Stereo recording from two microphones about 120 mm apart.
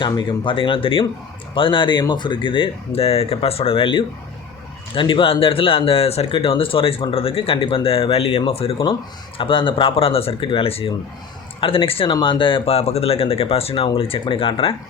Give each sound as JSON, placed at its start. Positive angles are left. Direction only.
{"t": 0.0, "sound": "speech", "side_deg": 40}